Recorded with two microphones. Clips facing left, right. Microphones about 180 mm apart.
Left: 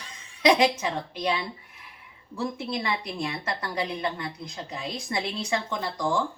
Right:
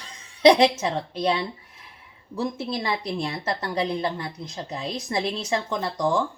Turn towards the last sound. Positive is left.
turn(degrees=-25)  # may be behind; listen again after turning